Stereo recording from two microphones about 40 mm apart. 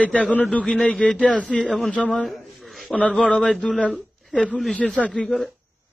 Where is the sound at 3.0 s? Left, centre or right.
Left.